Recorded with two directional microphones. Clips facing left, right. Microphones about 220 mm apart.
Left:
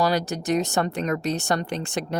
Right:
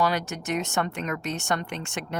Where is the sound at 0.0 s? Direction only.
35° left (ahead or behind).